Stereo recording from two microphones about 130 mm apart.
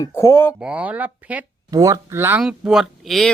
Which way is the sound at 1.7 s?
25° right (ahead or behind).